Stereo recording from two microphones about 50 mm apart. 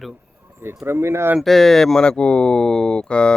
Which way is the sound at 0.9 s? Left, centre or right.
Right.